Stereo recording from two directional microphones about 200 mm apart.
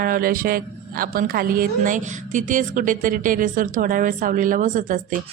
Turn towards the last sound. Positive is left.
turn(degrees=-40)  # may be behind; listen again after turning